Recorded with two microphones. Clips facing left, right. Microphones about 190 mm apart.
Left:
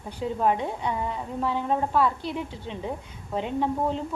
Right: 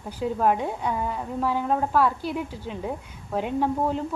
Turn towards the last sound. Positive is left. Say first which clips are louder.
# right 2 dB
turn(degrees=-5)  # may be behind; listen again after turning